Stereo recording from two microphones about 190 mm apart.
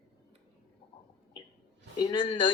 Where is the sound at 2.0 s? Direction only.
25° left (ahead or behind).